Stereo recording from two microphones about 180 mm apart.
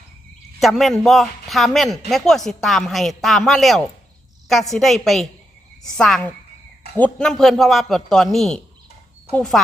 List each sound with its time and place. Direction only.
0.6 s speech: centre (ahead or behind)